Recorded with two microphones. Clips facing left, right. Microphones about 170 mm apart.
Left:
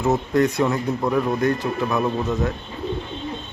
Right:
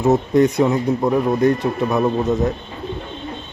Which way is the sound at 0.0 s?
20° right (ahead or behind).